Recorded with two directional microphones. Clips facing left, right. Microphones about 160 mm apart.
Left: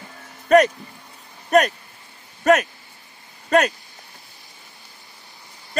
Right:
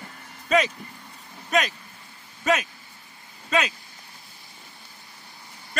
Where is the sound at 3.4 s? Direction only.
55° left (ahead or behind).